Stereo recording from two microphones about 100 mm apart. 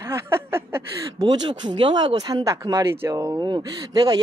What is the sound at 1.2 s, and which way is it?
Speech, 45° right (ahead or behind).